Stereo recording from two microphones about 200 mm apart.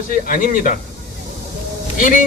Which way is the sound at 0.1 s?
45° left (ahead or behind).